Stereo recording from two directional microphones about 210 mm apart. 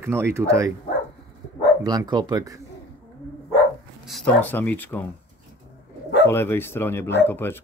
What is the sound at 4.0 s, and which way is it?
Speech, centre (ahead or behind).